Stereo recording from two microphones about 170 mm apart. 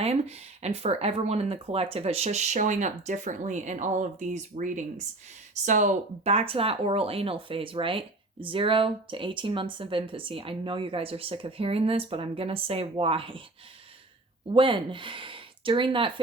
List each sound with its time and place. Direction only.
0.0 s speech: 35° right (ahead or behind)
14.5 s speech: 30° right (ahead or behind)